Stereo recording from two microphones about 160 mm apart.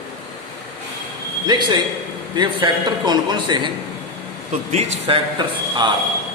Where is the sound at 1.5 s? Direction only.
25° right (ahead or behind).